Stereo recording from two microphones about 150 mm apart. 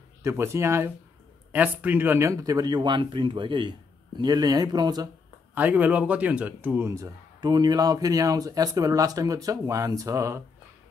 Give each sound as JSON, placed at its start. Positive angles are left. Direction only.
{"t": 0.2, "sound": "speech", "side_deg": -20}
{"t": 5.5, "sound": "speech", "side_deg": -10}